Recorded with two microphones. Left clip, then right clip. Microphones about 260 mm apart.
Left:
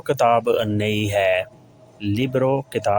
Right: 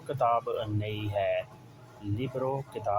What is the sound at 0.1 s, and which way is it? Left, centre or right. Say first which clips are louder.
Speech: left 10 dB; left.